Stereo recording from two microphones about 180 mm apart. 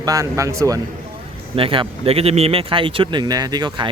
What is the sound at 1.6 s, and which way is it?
Speech, 30° right (ahead or behind).